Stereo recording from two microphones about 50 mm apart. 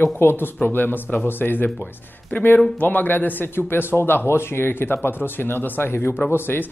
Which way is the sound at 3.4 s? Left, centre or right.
Left.